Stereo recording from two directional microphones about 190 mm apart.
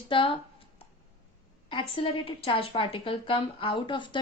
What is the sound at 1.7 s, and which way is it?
A woman's voice, 25° left (ahead or behind).